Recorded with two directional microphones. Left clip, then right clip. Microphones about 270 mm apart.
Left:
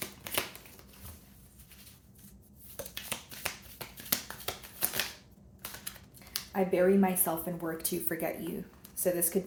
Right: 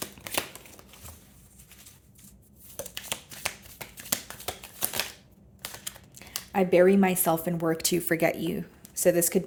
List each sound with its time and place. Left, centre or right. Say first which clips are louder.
0.0 s a sound: right 3 dB; right
2.7 s shuffling cards: right 4 dB; right
6.5 s speech: right 6 dB; right